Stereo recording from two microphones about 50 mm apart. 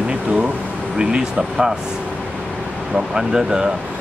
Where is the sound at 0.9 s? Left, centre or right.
Centre.